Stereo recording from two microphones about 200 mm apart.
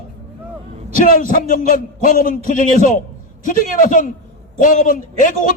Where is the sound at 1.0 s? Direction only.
40° left (ahead or behind).